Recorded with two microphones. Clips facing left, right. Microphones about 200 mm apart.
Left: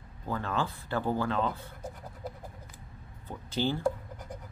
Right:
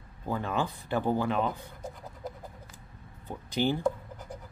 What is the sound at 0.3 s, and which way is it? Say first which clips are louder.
Speech: right 2 dB; 15° right (ahead or behind).